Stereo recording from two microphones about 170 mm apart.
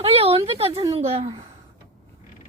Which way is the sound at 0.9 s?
35° right (ahead or behind).